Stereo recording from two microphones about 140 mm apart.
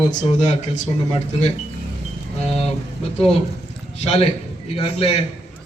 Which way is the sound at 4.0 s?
50° left (ahead or behind).